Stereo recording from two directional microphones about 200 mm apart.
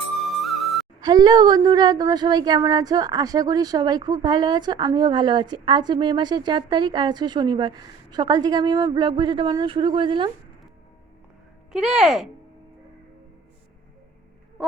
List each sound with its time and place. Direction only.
0.3 s music: centre (ahead or behind)
1.0 s speech: 20° right (ahead or behind)
11.7 s speech: 5° right (ahead or behind)